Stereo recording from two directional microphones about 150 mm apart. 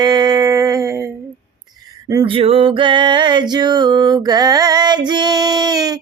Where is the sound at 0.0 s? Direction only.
25° right (ahead or behind).